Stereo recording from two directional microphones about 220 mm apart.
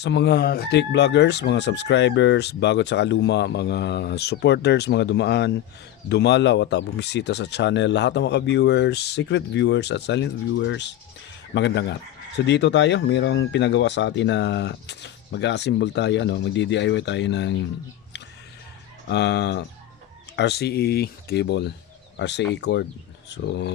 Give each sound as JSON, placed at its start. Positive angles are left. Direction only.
{"t": 0.0, "sound": "speech", "side_deg": 50}
{"t": 19.0, "sound": "speech", "side_deg": 50}